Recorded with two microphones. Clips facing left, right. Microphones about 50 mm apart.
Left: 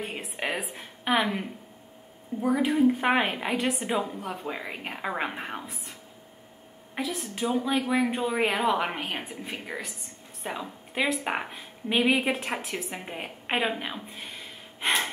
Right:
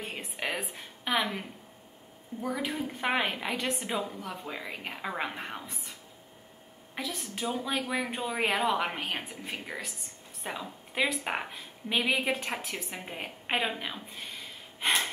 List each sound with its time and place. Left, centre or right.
0.0 s a sound: centre
1.0 s a woman's voice: centre
4.0 s a woman's voice: centre
7.0 s a woman's voice: centre